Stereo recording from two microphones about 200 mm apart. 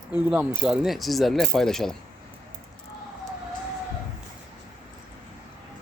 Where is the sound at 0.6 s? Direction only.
5° right (ahead or behind).